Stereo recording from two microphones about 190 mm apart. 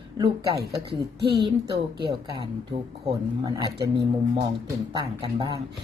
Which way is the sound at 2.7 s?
55° right (ahead or behind).